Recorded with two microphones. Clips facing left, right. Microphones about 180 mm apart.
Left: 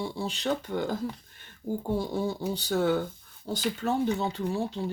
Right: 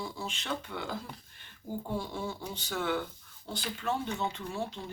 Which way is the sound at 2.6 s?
40° left (ahead or behind).